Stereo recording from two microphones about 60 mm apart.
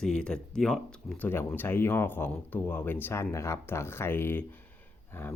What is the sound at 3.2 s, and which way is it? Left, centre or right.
Speech, left.